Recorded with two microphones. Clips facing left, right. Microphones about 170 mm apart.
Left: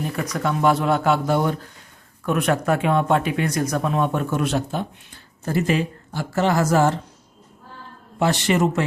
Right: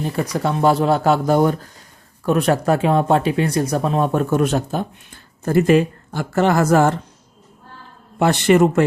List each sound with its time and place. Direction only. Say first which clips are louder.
0.0 s speech: right 3 dB; 30° right (ahead or behind); by 7.0 s 55° right (ahead or behind)
8.2 s a man's voice: right 5 dB; 55° right (ahead or behind)